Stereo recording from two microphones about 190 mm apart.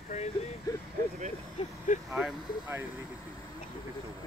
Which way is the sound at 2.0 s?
Centre (ahead or behind).